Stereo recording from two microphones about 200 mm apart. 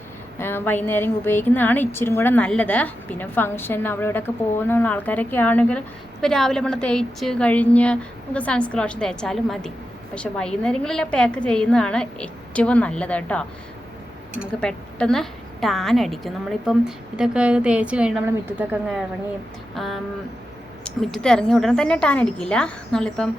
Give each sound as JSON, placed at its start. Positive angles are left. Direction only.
{"t": 0.3, "sound": "a woman's voice", "side_deg": 10}
{"t": 14.6, "sound": "a woman's voice", "side_deg": 5}